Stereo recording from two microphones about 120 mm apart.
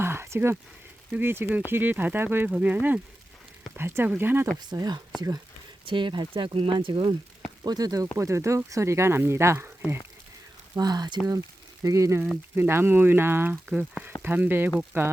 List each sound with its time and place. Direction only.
0.0 s a sound: 20° right (ahead or behind)
1.1 s speech: 20° right (ahead or behind)
4.6 s speech: 35° right (ahead or behind)
7.6 s speech: 35° right (ahead or behind); by 10.0 s 15° right (ahead or behind)
10.8 s speech: 35° right (ahead or behind); by 15.1 s 20° right (ahead or behind)